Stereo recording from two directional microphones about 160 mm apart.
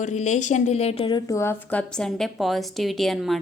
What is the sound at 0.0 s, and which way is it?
A woman's voice, 50° left (ahead or behind).